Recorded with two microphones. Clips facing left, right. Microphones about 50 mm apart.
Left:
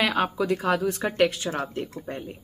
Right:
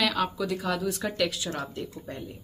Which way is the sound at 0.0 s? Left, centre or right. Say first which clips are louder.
Left 3 dB; left.